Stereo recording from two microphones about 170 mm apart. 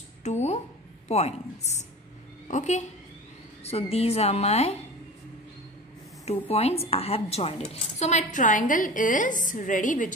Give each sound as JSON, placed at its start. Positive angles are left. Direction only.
{"t": 0.2, "sound": "a woman's voice", "side_deg": 40}
{"t": 6.2, "sound": "speech", "side_deg": 35}